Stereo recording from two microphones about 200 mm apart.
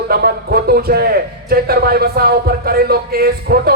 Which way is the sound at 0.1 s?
50° right (ahead or behind).